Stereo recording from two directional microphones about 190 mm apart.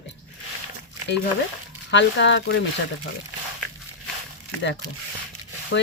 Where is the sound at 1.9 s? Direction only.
70° left (ahead or behind).